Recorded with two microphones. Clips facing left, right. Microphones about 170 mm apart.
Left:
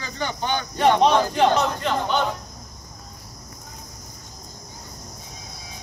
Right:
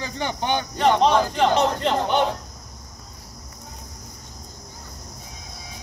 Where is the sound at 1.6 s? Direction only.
25° right (ahead or behind).